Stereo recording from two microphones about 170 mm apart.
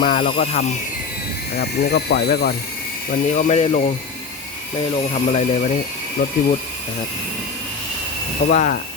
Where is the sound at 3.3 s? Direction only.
45° left (ahead or behind).